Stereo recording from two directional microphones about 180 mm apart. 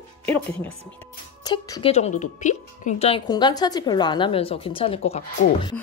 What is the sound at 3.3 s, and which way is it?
A woman's voice, 25° left (ahead or behind).